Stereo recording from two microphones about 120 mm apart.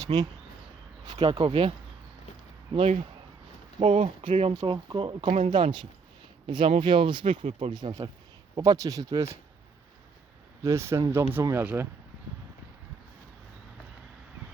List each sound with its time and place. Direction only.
0.0 s speech: 35° right (ahead or behind)
3.8 s speech: 50° right (ahead or behind)
4.5 s speech: 40° right (ahead or behind)
10.6 s speech: 25° right (ahead or behind)